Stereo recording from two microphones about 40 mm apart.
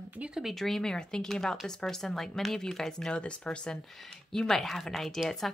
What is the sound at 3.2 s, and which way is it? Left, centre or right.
Speech, left.